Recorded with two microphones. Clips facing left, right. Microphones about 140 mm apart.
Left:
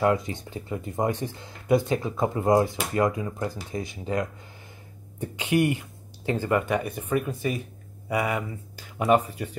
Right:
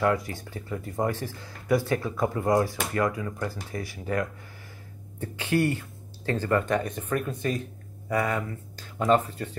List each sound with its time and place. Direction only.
0.0 s speech: 20° left (ahead or behind)